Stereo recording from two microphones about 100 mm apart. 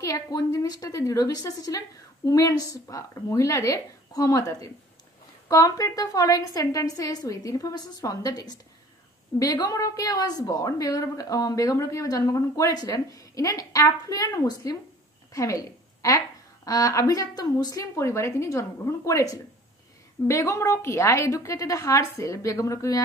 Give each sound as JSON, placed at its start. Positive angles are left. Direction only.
{"t": 0.0, "sound": "a woman's voice", "side_deg": 35}
{"t": 17.9, "sound": "a woman's voice", "side_deg": 25}